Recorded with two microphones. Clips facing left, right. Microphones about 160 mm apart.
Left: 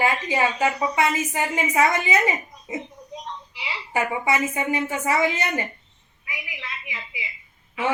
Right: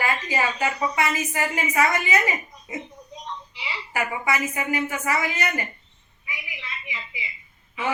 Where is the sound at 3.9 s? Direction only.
25° left (ahead or behind).